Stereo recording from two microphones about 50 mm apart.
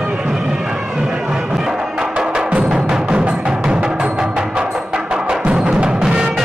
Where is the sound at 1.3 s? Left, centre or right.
Centre.